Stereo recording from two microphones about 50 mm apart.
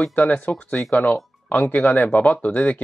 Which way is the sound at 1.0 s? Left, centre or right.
Left.